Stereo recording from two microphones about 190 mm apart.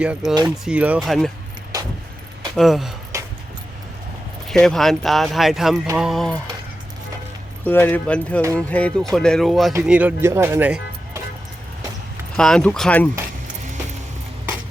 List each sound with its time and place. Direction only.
0.0 s speech: 5° right (ahead or behind)
1.7 s vehicle: 20° right (ahead or behind)
2.6 s speech: centre (ahead or behind)
3.1 s a sound: 15° right (ahead or behind)
4.4 s speech: centre (ahead or behind)
7.6 s speech: 10° left (ahead or behind); by 11.2 s 10° right (ahead or behind)
12.4 s speech: 5° left (ahead or behind)